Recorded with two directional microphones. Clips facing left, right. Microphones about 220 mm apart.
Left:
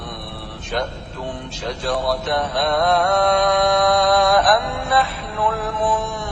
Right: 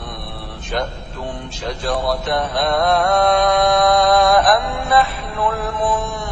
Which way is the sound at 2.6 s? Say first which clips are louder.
Right 1 dB; 50° right (ahead or behind).